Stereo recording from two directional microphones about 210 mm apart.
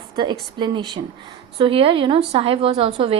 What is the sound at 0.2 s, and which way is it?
A woman's voice, 20° right (ahead or behind).